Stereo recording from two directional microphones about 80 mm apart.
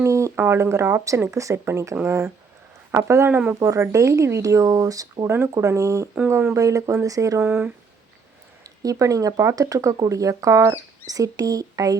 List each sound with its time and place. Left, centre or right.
0.0 s speech: right
3.2 s speech: right
3.6 s speech: right
5.3 s speech: right
7.4 s speech: right
8.6 s speech: right